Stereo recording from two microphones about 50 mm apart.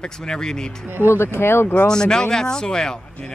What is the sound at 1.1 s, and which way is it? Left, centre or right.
Speech, left.